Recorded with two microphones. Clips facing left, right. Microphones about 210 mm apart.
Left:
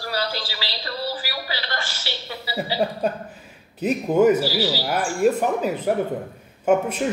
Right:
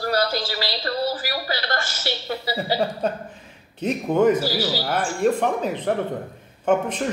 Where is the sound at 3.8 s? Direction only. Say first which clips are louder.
Left 1 dB; 5° left (ahead or behind).